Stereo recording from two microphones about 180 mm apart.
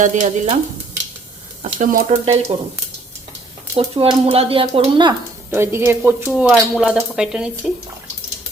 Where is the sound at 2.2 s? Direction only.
35° right (ahead or behind).